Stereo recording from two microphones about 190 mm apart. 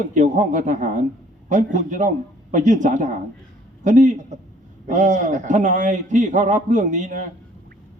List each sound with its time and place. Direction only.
0.1 s a man's voice: 40° right (ahead or behind)